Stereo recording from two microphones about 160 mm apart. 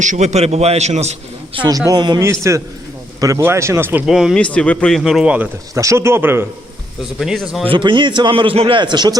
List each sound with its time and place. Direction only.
0.0 s a man's voice: 50° right (ahead or behind)
1.5 s a man's voice: 25° right (ahead or behind); by 5.5 s 5° right (ahead or behind)
5.7 s speech: 20° right (ahead or behind)
7.2 s a man's voice: centre (ahead or behind)
7.6 s a man's voice: 30° right (ahead or behind)